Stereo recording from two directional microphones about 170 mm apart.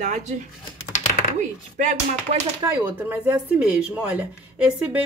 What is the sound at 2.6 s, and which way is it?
Speech, 10° right (ahead or behind).